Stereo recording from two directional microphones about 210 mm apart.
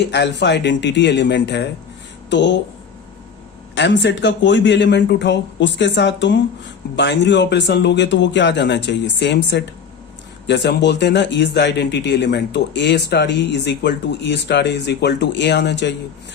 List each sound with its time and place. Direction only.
0.0 s speech: 55° left (ahead or behind)
3.8 s speech: 55° left (ahead or behind)